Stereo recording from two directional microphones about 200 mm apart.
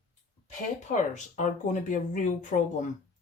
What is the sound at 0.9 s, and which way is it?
Speech, 40° left (ahead or behind).